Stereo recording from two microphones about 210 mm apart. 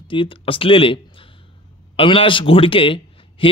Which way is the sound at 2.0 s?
25° left (ahead or behind).